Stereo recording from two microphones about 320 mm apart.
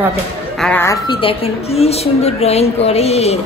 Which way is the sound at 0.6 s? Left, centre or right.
Centre.